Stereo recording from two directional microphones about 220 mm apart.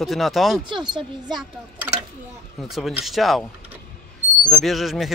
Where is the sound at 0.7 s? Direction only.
20° right (ahead or behind).